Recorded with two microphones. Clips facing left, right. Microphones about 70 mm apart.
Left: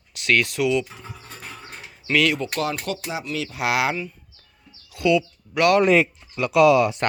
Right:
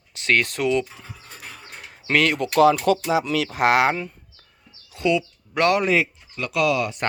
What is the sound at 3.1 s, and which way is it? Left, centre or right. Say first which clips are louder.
Speech: right 7 dB; right.